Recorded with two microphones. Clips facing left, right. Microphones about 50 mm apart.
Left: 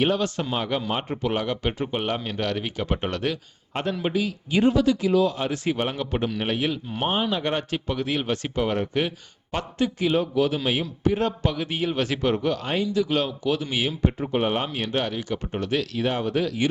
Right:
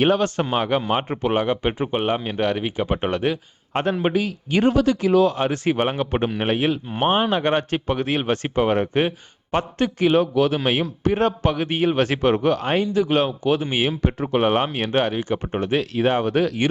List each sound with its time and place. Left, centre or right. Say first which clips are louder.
0.0 s speech: right 4 dB; right
3.7 s a man's voice: right 5 dB; right
9.7 s a man's voice: right 4 dB; right
14.0 s a man's voice: right 3 dB; right